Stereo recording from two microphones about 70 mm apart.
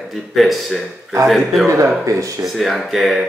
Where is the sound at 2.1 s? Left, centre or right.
Right.